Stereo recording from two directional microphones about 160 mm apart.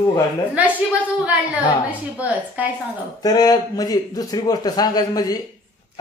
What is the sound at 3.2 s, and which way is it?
A man's voice, 25° left (ahead or behind).